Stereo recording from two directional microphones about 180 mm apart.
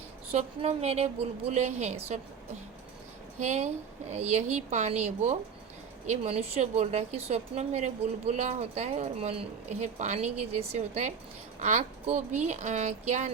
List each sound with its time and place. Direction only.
0.3 s a woman's voice: 35° right (ahead or behind)
3.4 s a woman's voice: 40° right (ahead or behind)